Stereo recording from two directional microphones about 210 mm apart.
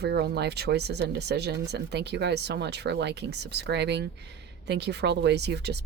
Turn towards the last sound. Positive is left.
turn(degrees=-55)  # may be behind; listen again after turning